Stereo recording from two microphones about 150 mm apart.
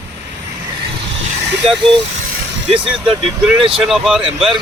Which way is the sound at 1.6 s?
40° right (ahead or behind).